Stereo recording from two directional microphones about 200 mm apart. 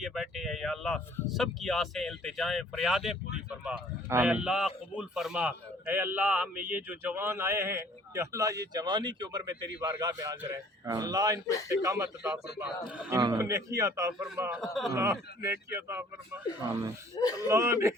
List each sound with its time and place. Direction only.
0.0 s a man's voice: centre (ahead or behind)
14.6 s speech: centre (ahead or behind)
14.9 s a man's voice: 15° right (ahead or behind)
17.2 s speech: 20° left (ahead or behind)
17.5 s a man's voice: 15° right (ahead or behind)